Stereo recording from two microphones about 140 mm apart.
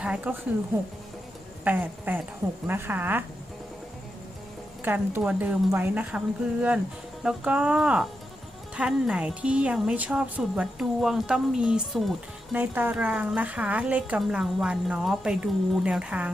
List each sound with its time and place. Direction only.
0.0 s speech: 10° right (ahead or behind)
1.6 s speech: 10° right (ahead or behind)
4.8 s speech: 15° right (ahead or behind)